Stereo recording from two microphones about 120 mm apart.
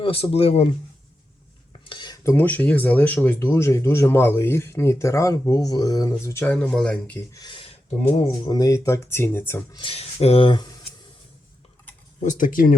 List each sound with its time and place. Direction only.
0.0 s speech: 55° left (ahead or behind)
1.8 s cutlery: 40° left (ahead or behind)
2.2 s speech: 15° left (ahead or behind)
6.4 s speech: 10° left (ahead or behind)
7.3 s speech: 40° left (ahead or behind)
8.4 s speech: 30° left (ahead or behind)
9.9 s speech: 55° left (ahead or behind); by 10.8 s 40° left (ahead or behind)
12.2 s speech: 90° left